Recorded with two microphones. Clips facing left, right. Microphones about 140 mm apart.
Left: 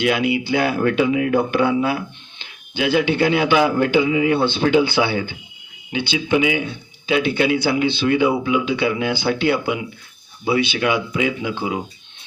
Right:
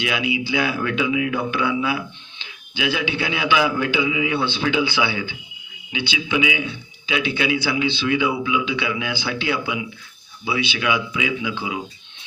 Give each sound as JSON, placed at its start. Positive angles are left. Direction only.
{"t": 0.0, "sound": "speech", "side_deg": 50}